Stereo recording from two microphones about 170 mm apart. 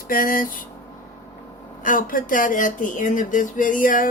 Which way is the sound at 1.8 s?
55° left (ahead or behind).